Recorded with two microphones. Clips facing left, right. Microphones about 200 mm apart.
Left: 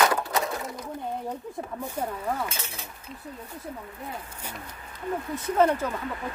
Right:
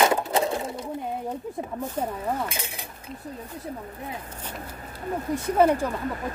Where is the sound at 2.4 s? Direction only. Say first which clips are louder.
Right 2 dB; 15° right (ahead or behind).